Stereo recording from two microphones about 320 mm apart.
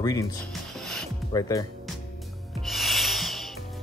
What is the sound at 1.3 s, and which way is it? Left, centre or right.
Speech, centre.